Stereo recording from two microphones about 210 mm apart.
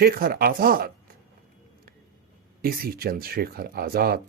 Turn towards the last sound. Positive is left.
turn(degrees=-45)  # may be behind; listen again after turning